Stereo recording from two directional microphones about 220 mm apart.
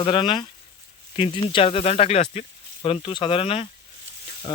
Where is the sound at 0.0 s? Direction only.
25° left (ahead or behind).